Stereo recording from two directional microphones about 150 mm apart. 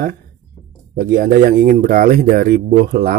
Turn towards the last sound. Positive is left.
turn(degrees=-90)